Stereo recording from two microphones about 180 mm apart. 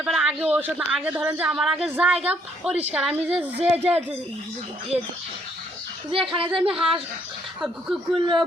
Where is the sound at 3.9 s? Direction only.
35° right (ahead or behind).